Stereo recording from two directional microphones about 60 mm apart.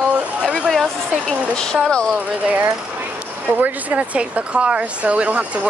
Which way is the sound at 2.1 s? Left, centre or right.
Right.